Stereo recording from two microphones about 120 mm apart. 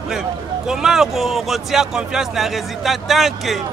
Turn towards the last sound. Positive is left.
turn(degrees=0)  # may be behind; listen again after turning